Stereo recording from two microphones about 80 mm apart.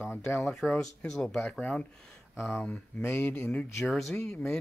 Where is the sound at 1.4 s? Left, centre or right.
Centre.